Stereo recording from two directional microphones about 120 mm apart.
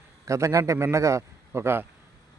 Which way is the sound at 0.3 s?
25° right (ahead or behind).